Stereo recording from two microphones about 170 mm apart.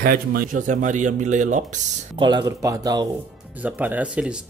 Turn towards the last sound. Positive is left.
turn(degrees=-10)  # may be behind; listen again after turning